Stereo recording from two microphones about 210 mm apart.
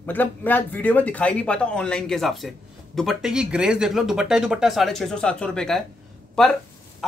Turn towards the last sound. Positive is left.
turn(degrees=5)  # may be behind; listen again after turning